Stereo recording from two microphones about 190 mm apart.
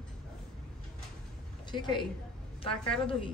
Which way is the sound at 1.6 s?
25° left (ahead or behind).